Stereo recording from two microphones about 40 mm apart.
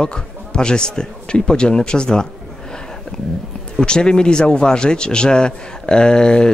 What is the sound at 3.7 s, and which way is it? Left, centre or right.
Speech, left.